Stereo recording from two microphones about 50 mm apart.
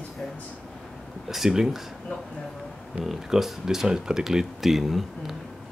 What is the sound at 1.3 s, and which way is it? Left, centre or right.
Speech, centre.